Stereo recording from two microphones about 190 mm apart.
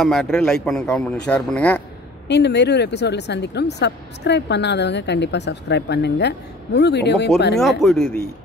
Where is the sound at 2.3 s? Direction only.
65° left (ahead or behind).